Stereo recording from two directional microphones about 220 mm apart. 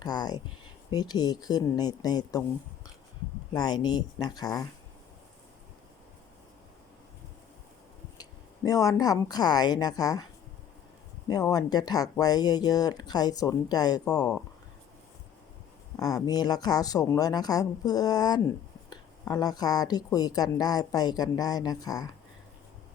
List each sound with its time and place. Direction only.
0.0 s speech: 20° left (ahead or behind)
3.5 s speech: 20° left (ahead or behind)
8.2 s speech: 15° left (ahead or behind)
11.3 s speech: 15° left (ahead or behind)
16.0 s speech: 15° left (ahead or behind)